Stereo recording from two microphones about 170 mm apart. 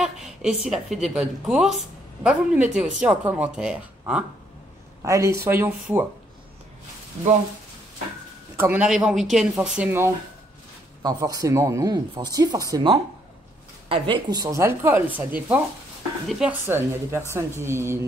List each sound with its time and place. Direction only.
0.0 s a woman's voice: 5° right (ahead or behind)
5.0 s a woman's voice: 15° right (ahead or behind)
8.5 s a woman's voice: 10° right (ahead or behind)
13.8 s a woman's voice: 30° right (ahead or behind); by 16.5 s 5° right (ahead or behind)
16.6 s a woman's voice: 15° right (ahead or behind)